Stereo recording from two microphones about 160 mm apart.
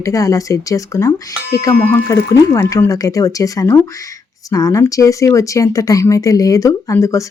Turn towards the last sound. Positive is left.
turn(degrees=20)  # may be behind; listen again after turning